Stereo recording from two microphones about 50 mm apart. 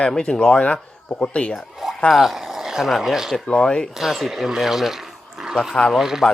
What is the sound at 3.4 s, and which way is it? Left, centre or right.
Speech, centre.